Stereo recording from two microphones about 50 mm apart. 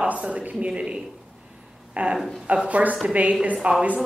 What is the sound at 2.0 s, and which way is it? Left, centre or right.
A woman's voice, right.